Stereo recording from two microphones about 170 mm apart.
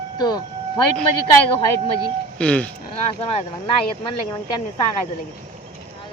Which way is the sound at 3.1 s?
35° left (ahead or behind).